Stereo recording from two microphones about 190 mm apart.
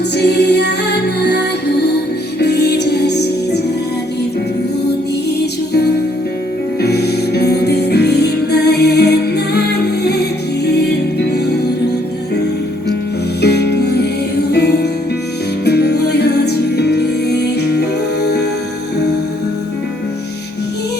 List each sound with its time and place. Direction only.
0.2 s music: 60° left (ahead or behind)
6.8 s music: 60° left (ahead or behind)
13.4 s music: 60° left (ahead or behind)